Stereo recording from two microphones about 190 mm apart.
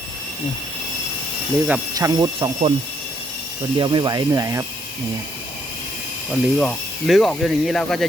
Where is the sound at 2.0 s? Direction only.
15° right (ahead or behind).